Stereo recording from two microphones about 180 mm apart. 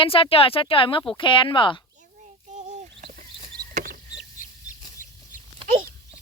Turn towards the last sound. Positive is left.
turn(degrees=-40)  # may be behind; listen again after turning